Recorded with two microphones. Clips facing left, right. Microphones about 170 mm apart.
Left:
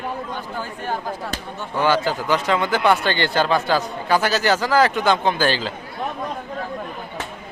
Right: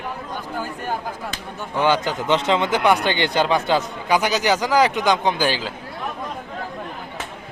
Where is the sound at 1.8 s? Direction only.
20° right (ahead or behind).